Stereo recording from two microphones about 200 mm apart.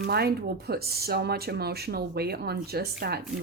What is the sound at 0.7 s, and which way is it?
A woman's voice, 50° right (ahead or behind).